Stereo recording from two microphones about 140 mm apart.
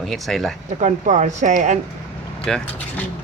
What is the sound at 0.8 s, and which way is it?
Speech, 60° right (ahead or behind).